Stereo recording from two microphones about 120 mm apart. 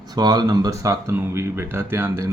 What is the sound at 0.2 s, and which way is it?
Speech, 35° right (ahead or behind).